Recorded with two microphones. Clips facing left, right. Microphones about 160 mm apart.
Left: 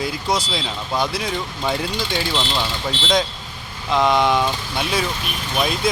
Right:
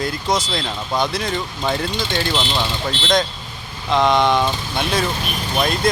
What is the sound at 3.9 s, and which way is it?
Speech, 5° left (ahead or behind).